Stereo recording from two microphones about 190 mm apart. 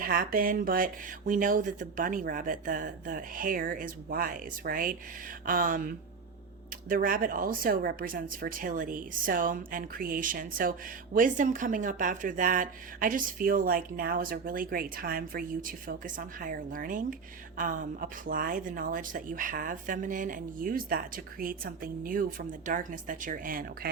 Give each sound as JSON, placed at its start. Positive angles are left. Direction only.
{"t": 0.0, "sound": "speech", "side_deg": -50}